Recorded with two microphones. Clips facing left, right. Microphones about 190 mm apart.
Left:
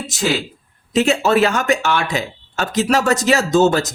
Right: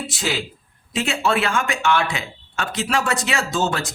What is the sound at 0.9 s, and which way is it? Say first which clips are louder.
Speech: left 7 dB; 40° left (ahead or behind).